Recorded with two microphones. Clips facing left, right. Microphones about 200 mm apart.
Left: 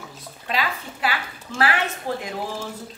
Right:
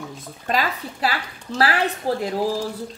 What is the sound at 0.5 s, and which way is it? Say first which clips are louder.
A woman's voice: right 3 dB; 45° right (ahead or behind).